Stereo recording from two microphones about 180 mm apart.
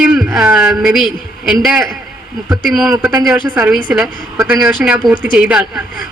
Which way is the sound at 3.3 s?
5° right (ahead or behind).